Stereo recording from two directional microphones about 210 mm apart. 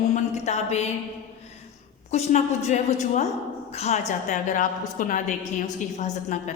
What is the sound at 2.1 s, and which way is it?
A woman's voice, 35° left (ahead or behind).